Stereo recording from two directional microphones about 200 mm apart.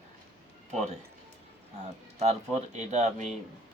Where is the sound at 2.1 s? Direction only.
35° right (ahead or behind).